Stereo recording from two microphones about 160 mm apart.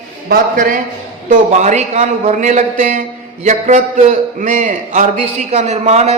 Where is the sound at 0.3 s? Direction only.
55° right (ahead or behind).